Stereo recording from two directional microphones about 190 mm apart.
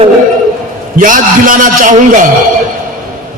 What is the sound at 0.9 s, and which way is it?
A man's voice, 45° right (ahead or behind).